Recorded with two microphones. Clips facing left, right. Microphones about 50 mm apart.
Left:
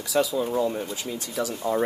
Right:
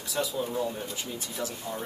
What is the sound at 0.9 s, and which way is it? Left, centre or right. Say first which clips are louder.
Speech: left 5 dB; left.